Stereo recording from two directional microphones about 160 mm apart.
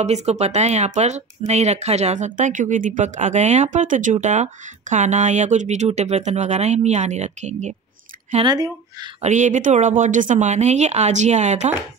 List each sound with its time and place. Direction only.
0.0 s speech: 45° right (ahead or behind)
8.5 s speech: 25° right (ahead or behind)
9.2 s speech: 50° right (ahead or behind)